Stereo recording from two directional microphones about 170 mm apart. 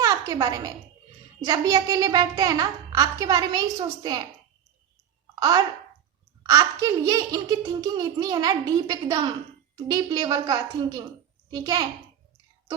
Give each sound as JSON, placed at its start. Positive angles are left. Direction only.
{"t": 0.0, "sound": "a sound", "side_deg": -20}
{"t": 1.5, "sound": "a child's voice", "side_deg": -20}
{"t": 5.3, "sound": "a child's voice", "side_deg": -20}